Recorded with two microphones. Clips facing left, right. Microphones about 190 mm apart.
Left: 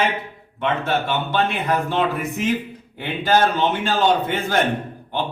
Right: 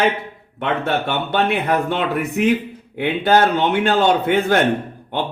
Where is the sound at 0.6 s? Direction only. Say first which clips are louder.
Right 1 dB; 65° right (ahead or behind).